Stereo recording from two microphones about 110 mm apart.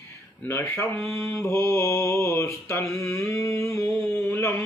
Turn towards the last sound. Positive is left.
turn(degrees=20)  # may be behind; listen again after turning